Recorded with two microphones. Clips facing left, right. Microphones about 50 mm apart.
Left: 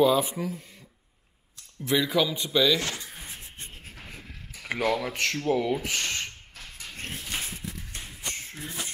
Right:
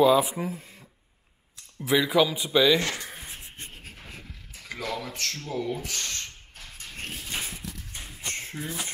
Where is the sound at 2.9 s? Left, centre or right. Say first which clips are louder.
Right 2 dB; right.